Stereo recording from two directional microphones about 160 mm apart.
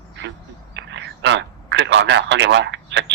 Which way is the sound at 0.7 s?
90° right.